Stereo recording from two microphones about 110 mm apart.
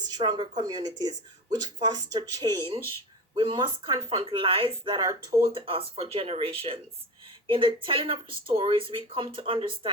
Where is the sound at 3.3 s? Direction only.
45° right (ahead or behind).